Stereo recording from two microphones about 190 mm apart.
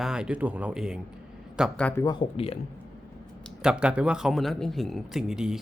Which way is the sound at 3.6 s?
5° right (ahead or behind).